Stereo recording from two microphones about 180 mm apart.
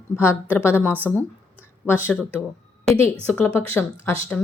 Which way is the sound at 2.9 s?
5° left (ahead or behind).